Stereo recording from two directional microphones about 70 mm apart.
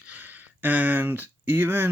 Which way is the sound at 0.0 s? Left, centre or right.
Right.